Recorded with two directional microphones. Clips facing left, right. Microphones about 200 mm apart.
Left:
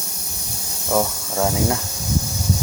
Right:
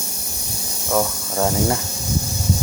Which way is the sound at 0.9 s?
5° left (ahead or behind).